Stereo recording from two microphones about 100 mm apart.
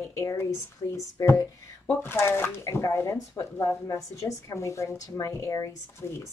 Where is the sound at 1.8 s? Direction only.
20° left (ahead or behind).